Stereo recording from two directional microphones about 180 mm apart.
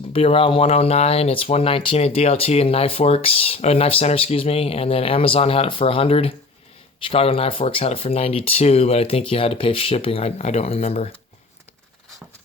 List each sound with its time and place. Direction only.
0.1 s speech: 30° left (ahead or behind)